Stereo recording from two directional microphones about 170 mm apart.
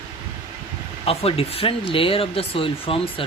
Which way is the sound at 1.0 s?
35° left (ahead or behind).